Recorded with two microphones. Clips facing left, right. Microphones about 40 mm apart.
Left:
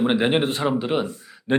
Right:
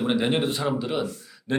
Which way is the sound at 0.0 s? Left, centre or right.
Left.